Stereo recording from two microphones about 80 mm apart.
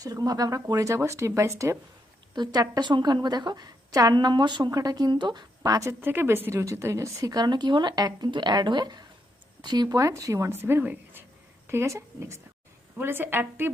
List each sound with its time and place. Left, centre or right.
0.0 s a woman's voice: right
2.3 s a woman's voice: right
4.1 s speech: right
4.7 s a woman's voice: right
5.1 s a woman's voice: right
5.9 s a woman's voice: right
8.3 s a woman's voice: right
10.0 s a woman's voice: right